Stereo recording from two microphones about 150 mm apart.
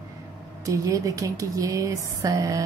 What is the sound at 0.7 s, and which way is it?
Speech, 20° right (ahead or behind).